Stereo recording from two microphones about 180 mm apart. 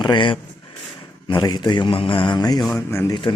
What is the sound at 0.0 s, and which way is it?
Speech, 25° left (ahead or behind).